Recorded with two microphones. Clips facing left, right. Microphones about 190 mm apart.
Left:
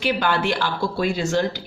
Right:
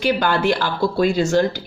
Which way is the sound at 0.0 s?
40° right (ahead or behind).